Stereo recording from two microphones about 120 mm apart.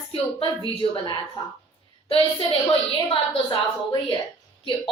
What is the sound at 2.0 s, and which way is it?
A woman's voice, 50° left (ahead or behind).